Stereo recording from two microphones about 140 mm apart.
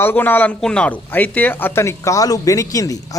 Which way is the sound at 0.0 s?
15° left (ahead or behind).